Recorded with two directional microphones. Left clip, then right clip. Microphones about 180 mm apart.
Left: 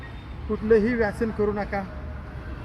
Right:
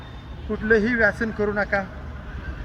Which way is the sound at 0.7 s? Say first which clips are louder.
Right 2 dB; 15° right (ahead or behind).